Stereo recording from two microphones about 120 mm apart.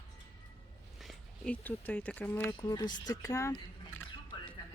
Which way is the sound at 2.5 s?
35° left (ahead or behind).